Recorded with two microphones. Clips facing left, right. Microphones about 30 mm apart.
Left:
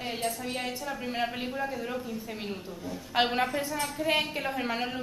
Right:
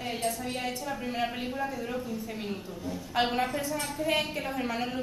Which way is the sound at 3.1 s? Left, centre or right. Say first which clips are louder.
Left 1 dB; centre.